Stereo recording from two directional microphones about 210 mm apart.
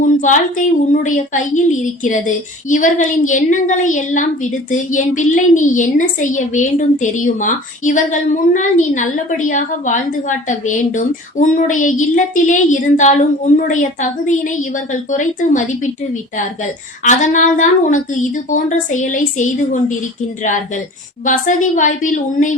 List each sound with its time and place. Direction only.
0.0 s female singing: 35° left (ahead or behind)
1.0 s a woman's voice: 35° left (ahead or behind)
17.0 s a woman's voice: 35° left (ahead or behind)
21.2 s a woman's voice: 35° left (ahead or behind)